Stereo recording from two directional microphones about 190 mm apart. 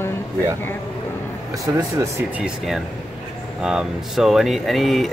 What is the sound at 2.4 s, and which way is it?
Speech, centre (ahead or behind).